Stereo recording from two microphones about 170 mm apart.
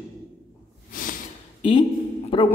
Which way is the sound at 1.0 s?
55° left (ahead or behind).